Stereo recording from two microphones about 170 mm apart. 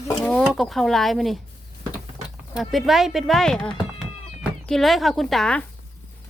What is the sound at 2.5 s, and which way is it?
Speech, centre (ahead or behind).